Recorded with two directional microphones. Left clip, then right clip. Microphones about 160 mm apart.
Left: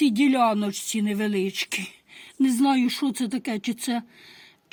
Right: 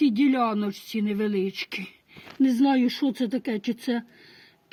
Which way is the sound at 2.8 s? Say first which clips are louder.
Even; 45° left (ahead or behind).